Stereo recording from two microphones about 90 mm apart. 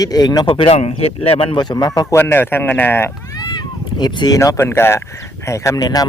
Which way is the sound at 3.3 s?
50° left (ahead or behind).